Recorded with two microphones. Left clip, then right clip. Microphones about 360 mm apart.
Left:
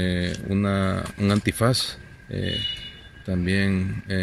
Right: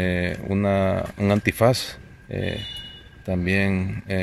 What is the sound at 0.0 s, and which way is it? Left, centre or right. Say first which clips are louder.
Speech: right 3 dB; centre.